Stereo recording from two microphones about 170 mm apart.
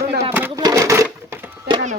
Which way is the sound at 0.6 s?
20° right (ahead or behind).